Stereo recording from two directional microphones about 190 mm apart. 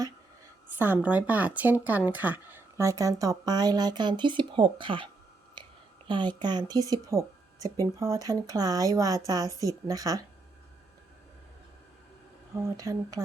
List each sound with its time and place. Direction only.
0.8 s speech: 10° right (ahead or behind); by 5.0 s 25° right (ahead or behind)
6.1 s speech: 25° right (ahead or behind)
12.5 s speech: 15° right (ahead or behind)